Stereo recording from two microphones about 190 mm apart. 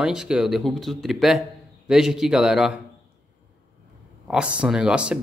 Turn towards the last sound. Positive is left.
turn(degrees=-5)  # may be behind; listen again after turning